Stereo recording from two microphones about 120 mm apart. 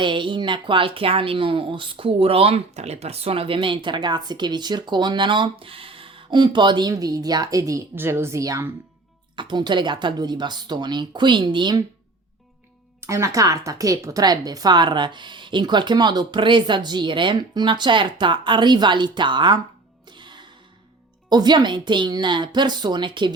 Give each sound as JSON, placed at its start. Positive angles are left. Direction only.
{"t": 0.0, "sound": "speech", "side_deg": -40}
{"t": 9.3, "sound": "speech", "side_deg": -40}
{"t": 13.0, "sound": "speech", "side_deg": -25}
{"t": 20.1, "sound": "music", "side_deg": -40}
{"t": 21.2, "sound": "speech", "side_deg": -35}